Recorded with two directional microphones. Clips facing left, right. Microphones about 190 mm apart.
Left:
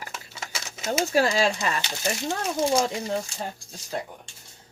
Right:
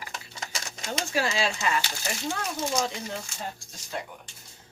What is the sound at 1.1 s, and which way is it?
Speech, 40° left (ahead or behind).